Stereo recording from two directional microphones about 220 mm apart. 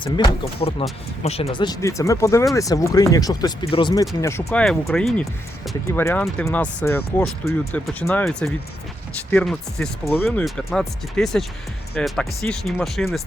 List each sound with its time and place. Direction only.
0.0 s speech: 20° left (ahead or behind); by 5.7 s centre (ahead or behind)
5.9 s speech: 10° left (ahead or behind)